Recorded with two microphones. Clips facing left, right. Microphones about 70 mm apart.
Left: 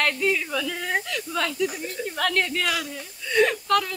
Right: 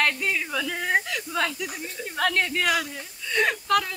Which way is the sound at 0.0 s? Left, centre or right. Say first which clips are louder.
Left 2 dB; centre.